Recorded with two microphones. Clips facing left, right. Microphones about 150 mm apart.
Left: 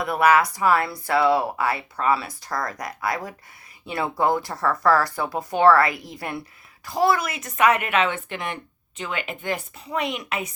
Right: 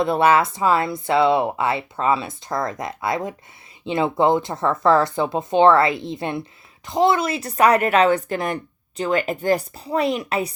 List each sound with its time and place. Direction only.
0.0 s a woman's voice: 25° right (ahead or behind)